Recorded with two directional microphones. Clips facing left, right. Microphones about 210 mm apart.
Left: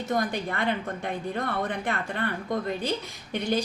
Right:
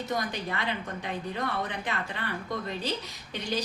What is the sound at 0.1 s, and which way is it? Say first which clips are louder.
A woman's voice: left 6 dB; 50° left (ahead or behind).